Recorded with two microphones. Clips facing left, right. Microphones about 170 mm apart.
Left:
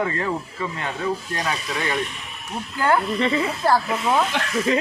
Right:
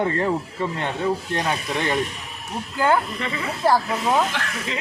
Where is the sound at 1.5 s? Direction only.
50° right (ahead or behind).